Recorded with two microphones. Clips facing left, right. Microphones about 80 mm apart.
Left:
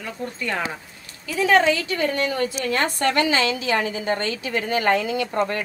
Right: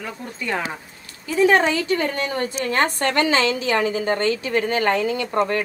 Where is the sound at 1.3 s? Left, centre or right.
Right.